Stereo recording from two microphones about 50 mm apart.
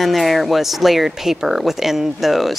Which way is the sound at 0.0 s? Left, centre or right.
Centre.